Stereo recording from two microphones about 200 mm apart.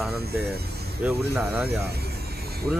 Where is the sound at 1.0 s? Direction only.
Centre (ahead or behind).